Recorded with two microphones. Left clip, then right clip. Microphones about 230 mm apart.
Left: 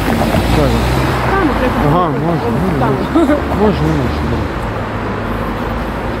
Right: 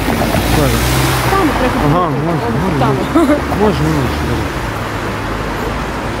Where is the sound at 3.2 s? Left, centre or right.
Right.